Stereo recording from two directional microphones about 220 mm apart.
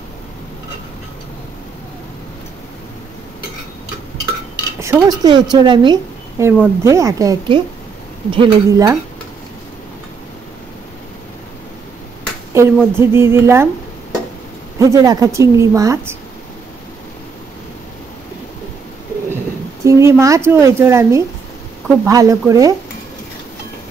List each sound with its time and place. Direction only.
4.7 s a woman's voice: 15° right (ahead or behind)
12.5 s a woman's voice: 10° right (ahead or behind)
14.8 s a woman's voice: 15° right (ahead or behind)
19.3 s a woman's voice: 10° right (ahead or behind)